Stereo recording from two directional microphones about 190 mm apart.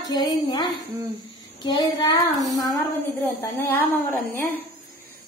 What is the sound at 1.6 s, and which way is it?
A woman's voice, 20° left (ahead or behind).